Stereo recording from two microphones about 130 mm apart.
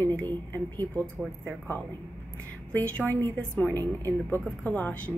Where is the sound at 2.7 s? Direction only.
10° left (ahead or behind).